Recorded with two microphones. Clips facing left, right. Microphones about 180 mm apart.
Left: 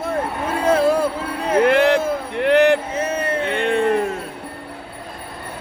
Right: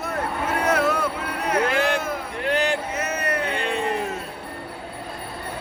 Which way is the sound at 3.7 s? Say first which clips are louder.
Left 10 dB; 55° left (ahead or behind).